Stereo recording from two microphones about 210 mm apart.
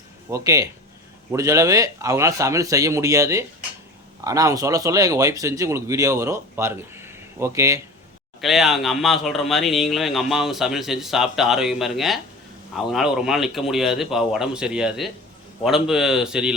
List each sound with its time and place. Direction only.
0.3 s speech: 15° right (ahead or behind)
8.4 s speech: centre (ahead or behind)